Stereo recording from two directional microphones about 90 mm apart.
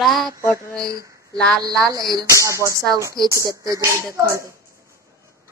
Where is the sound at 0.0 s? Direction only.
Centre (ahead or behind).